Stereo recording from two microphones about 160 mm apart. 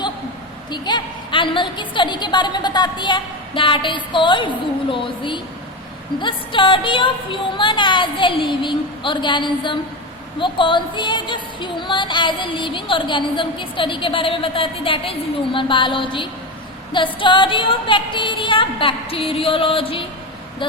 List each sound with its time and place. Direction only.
0.7 s a woman's voice: 30° left (ahead or behind)